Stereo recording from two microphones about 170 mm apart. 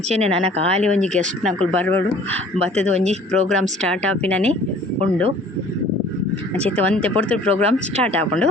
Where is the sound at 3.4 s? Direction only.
5° left (ahead or behind).